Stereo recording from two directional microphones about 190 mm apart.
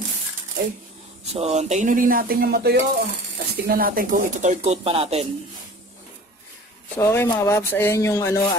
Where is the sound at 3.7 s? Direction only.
50° right (ahead or behind); by 5.3 s 30° right (ahead or behind).